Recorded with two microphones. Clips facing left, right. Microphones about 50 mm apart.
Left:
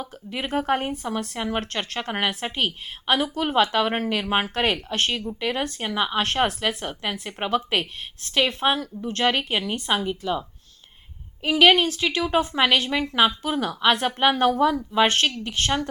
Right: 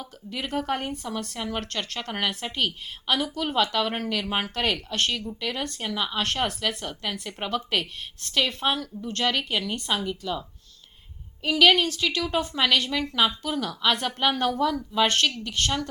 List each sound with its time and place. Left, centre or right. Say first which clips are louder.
0.0 s speech: left 3 dB; left
11.4 s speech: left 2 dB; left